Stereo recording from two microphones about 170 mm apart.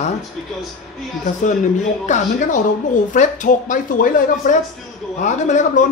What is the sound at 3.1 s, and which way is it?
Speech, 50° left (ahead or behind).